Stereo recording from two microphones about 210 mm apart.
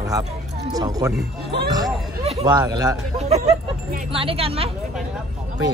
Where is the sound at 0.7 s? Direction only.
15° right (ahead or behind).